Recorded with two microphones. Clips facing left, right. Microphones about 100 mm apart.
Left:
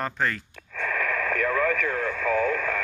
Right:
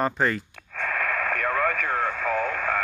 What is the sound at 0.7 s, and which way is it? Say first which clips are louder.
Radio: even; 45° right (ahead or behind).